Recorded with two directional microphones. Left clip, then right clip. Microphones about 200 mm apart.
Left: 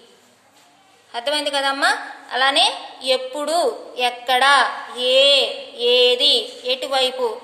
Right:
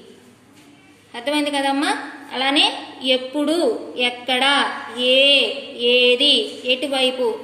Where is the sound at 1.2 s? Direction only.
50° left (ahead or behind).